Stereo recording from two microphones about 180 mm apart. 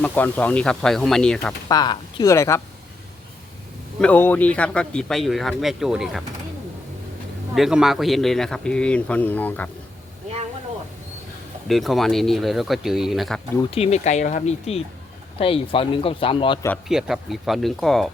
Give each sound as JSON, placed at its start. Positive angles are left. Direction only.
{"t": 0.0, "sound": "a man's voice", "side_deg": 10}
{"t": 1.6, "sound": "speech", "side_deg": 25}
{"t": 4.0, "sound": "a man's voice", "side_deg": 10}
{"t": 7.5, "sound": "a man's voice", "side_deg": 0}
{"t": 11.7, "sound": "a man's voice", "side_deg": 0}
{"t": 13.7, "sound": "speech", "side_deg": 35}
{"t": 16.9, "sound": "a man's voice", "side_deg": 0}